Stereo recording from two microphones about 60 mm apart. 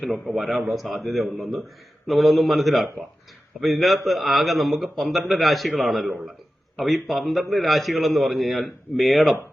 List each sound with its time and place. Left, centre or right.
0.3 s a man's voice: centre